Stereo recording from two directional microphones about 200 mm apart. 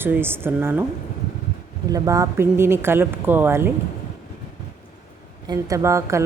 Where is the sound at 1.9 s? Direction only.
15° right (ahead or behind).